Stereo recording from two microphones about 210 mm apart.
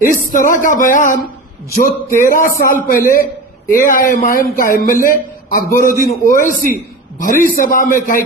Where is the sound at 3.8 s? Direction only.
40° left (ahead or behind).